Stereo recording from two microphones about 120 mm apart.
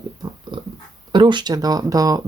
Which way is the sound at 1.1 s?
40° right (ahead or behind).